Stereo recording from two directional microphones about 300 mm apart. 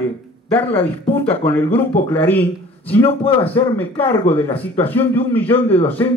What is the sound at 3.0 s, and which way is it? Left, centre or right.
Speech, centre.